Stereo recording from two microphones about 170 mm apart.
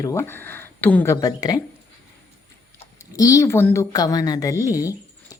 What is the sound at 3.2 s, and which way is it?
Speech, 20° left (ahead or behind).